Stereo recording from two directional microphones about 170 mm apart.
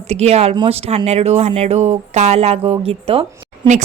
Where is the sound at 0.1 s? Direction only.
40° right (ahead or behind).